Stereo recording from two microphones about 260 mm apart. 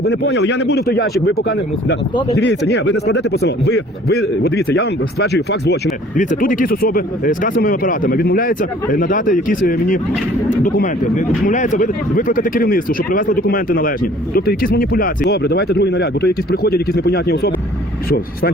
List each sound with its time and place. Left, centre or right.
0.0 s speech: left